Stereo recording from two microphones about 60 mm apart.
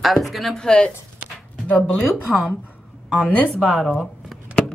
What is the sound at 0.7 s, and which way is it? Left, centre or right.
Speech, centre.